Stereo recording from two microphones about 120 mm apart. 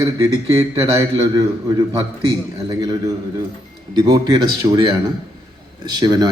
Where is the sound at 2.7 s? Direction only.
30° right (ahead or behind).